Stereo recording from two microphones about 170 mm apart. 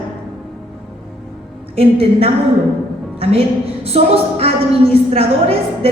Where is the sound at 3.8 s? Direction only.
35° right (ahead or behind).